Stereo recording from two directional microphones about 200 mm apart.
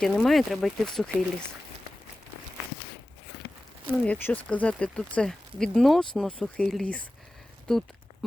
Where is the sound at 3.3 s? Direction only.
55° left (ahead or behind).